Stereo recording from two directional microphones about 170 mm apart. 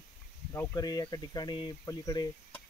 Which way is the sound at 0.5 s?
20° left (ahead or behind).